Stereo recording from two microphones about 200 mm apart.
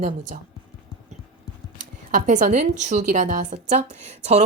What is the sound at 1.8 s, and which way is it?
Speech, 40° right (ahead or behind).